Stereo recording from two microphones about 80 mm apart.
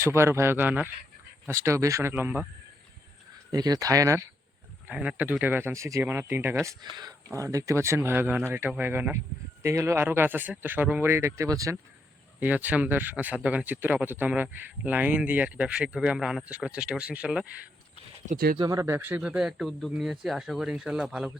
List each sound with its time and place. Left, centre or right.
0.0 s speech: right
1.5 s speech: right
3.5 s speech: right
4.9 s speech: centre
5.7 s speech: right
7.3 s speech: right
9.6 s speech: right
10.1 s speech: right
11.1 s speech: right
12.4 s speech: right
18.7 s speech: right
18.9 s speech: right
19.2 s speech: centre
19.5 s speech: centre